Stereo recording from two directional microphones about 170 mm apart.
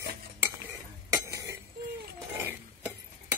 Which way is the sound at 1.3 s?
20° right (ahead or behind).